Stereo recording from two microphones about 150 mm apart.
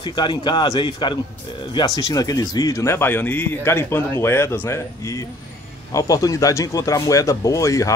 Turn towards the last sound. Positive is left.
turn(degrees=20)  # may be behind; listen again after turning